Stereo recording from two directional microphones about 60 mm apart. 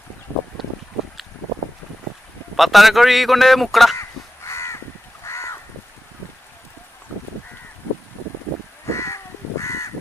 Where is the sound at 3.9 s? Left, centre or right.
Left.